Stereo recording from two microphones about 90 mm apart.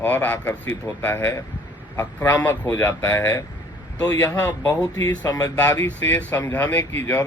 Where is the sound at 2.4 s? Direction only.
20° left (ahead or behind).